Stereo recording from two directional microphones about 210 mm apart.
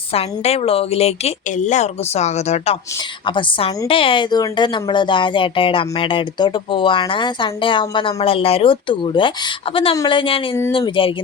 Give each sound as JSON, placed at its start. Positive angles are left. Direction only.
{"t": 0.1, "sound": "speech", "side_deg": 30}